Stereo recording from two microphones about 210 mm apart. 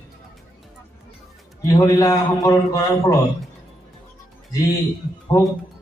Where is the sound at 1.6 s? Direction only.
15° left (ahead or behind).